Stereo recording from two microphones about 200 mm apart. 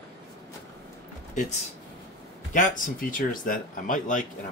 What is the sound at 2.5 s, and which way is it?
Speech, 40° left (ahead or behind).